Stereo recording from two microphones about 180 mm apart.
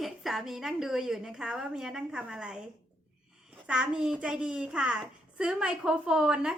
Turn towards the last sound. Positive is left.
turn(degrees=-5)  # may be behind; listen again after turning